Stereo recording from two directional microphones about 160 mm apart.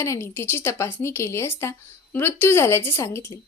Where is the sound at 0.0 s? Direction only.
15° left (ahead or behind).